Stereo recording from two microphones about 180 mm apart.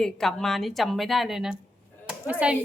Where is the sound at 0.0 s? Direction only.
Centre (ahead or behind).